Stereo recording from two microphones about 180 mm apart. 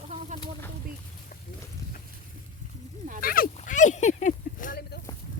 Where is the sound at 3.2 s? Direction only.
55° left (ahead or behind).